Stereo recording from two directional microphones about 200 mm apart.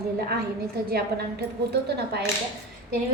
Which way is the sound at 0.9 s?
55° right (ahead or behind).